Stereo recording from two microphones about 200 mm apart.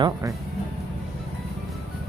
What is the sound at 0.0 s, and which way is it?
Speech, 15° right (ahead or behind).